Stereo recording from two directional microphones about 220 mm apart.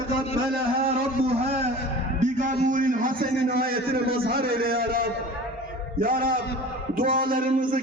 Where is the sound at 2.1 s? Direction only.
35° right (ahead or behind).